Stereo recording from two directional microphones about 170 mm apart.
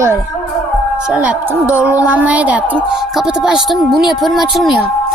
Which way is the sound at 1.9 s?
10° right (ahead or behind).